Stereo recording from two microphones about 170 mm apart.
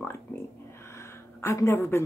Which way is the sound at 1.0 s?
15° left (ahead or behind).